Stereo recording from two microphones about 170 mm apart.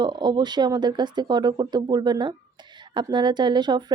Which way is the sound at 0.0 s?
25° right (ahead or behind).